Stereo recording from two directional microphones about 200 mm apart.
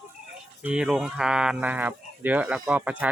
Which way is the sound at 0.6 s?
5° right (ahead or behind).